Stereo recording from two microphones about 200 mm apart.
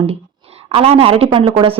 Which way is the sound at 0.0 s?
30° right (ahead or behind).